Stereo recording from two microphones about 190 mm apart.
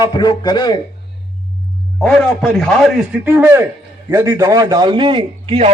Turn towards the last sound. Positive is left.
turn(degrees=-35)  # may be behind; listen again after turning